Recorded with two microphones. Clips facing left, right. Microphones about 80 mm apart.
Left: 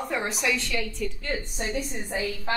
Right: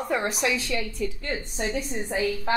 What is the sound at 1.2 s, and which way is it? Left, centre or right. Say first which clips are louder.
A woman's voice: right 1 dB; right.